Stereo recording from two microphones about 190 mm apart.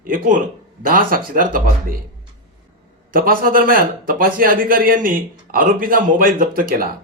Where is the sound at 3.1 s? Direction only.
50° right (ahead or behind).